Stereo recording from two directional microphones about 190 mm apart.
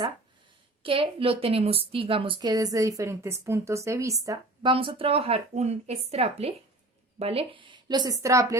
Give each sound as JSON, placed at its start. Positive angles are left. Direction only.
{"t": 0.8, "sound": "a woman's voice", "side_deg": -30}